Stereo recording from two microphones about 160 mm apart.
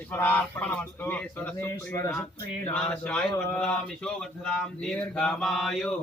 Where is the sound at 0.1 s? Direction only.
10° left (ahead or behind).